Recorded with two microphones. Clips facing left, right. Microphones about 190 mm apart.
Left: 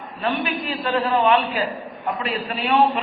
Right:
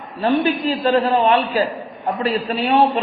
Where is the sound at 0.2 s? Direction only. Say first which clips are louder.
Right 7 dB; 35° right (ahead or behind).